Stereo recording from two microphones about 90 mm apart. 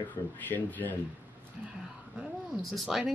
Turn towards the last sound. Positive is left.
turn(degrees=0)  # may be behind; listen again after turning